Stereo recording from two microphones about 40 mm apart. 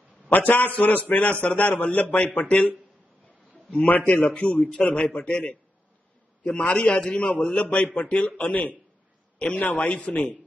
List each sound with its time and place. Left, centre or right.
0.3 s a man's voice: left
3.7 s a man's voice: left
4.3 s a man's voice: left